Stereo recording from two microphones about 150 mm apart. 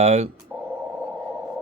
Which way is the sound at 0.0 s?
45° right (ahead or behind).